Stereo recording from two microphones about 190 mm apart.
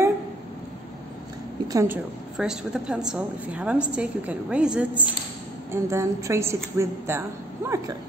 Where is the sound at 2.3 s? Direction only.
5° right (ahead or behind).